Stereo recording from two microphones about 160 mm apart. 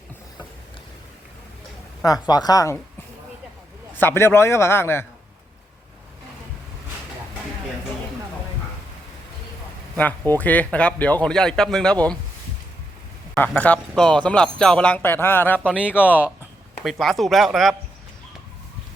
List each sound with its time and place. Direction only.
2.2 s speech: 25° left (ahead or behind)
3.9 s speech: 15° left (ahead or behind)
9.9 s speech: 10° left (ahead or behind)
13.3 s speech: 10° left (ahead or behind)
15.7 s speech: 5° right (ahead or behind)